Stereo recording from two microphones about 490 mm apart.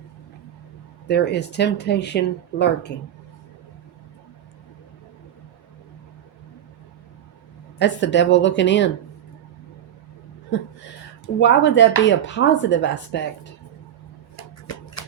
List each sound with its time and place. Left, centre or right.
1.0 s speech: centre
7.8 s speech: left
11.3 s speech: left
14.3 s a sound: left